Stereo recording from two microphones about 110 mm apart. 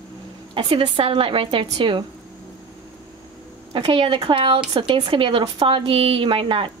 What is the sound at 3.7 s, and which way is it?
Speech, 50° right (ahead or behind).